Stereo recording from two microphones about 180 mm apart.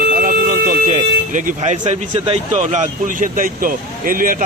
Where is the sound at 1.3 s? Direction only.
45° right (ahead or behind).